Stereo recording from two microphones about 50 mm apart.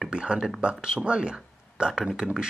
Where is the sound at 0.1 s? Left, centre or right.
Centre.